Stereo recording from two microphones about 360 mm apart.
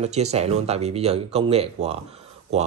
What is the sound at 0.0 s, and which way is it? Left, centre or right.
A man's voice, centre.